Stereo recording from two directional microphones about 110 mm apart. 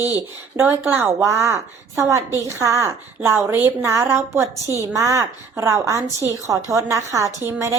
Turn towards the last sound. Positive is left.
turn(degrees=-30)  # may be behind; listen again after turning